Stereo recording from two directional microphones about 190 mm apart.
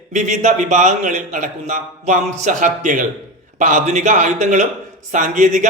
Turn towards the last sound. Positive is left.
turn(degrees=-40)  # may be behind; listen again after turning